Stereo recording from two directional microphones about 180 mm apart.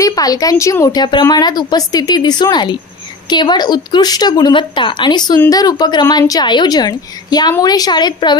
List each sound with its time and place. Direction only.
0.0 s a woman's voice: 20° left (ahead or behind)